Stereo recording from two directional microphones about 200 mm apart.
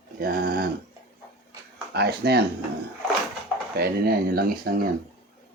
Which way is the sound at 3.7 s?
50° right (ahead or behind).